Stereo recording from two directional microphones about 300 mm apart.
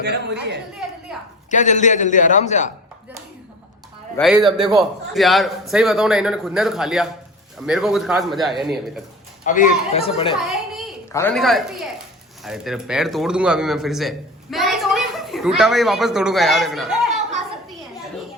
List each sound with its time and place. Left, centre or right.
0.0 s speech: right
0.8 s a sound: centre
1.5 s a man's voice: left
4.2 s a man's voice: centre
9.5 s a man's voice: left
10.4 s a sound: centre
11.1 s a man's voice: centre